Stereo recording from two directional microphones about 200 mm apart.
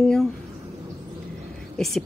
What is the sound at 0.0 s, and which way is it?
Speech, centre (ahead or behind).